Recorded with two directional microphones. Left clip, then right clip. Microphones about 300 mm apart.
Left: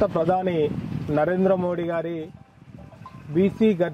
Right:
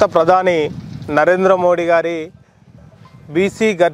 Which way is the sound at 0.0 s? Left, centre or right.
Centre.